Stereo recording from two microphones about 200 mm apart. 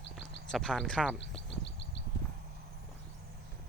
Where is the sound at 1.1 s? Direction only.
60° left (ahead or behind).